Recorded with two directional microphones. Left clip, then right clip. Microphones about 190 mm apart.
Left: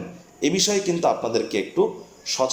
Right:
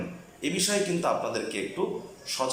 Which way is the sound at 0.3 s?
25° left (ahead or behind).